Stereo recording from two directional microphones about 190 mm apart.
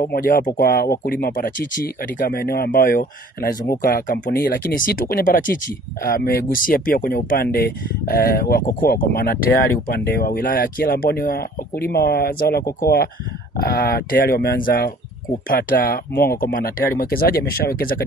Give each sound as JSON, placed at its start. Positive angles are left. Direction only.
{"t": 0.0, "sound": "speech", "side_deg": 50}